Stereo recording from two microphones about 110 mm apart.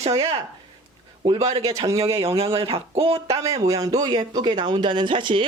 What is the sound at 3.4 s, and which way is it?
Speech, 30° right (ahead or behind).